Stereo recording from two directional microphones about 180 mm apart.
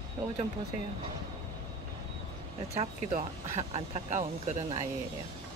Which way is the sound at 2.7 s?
35° right (ahead or behind).